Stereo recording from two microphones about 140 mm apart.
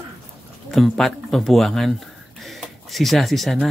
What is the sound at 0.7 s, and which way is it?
Speech, centre (ahead or behind).